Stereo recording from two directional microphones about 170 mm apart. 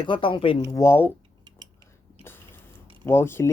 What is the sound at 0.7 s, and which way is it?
Speech, 15° left (ahead or behind).